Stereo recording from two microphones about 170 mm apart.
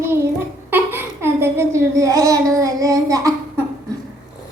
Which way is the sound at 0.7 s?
15° right (ahead or behind).